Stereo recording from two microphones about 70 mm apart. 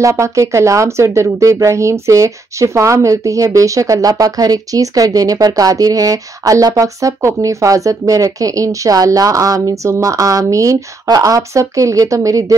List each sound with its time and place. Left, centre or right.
0.0 s speech: right